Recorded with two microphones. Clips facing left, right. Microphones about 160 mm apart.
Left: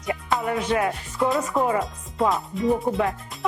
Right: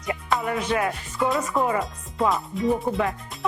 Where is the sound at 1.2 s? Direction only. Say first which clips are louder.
Left 1 dB; centre (ahead or behind).